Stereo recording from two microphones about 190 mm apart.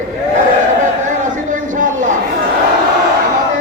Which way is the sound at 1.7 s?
45° right (ahead or behind).